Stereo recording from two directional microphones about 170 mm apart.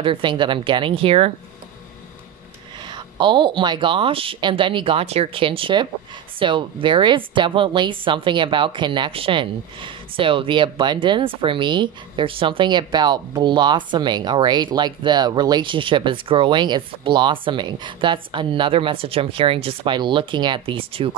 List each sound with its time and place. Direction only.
0.0 s speech: 30° right (ahead or behind)
2.9 s speech: 25° right (ahead or behind)